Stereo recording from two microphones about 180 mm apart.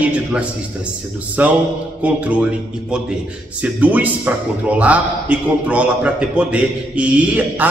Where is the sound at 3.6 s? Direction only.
10° right (ahead or behind).